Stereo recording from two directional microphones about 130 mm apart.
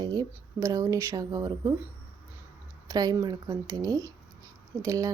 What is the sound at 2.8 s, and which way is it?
Speech, 30° right (ahead or behind).